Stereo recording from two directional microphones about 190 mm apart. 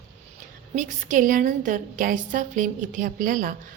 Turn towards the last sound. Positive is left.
turn(degrees=-45)  # may be behind; listen again after turning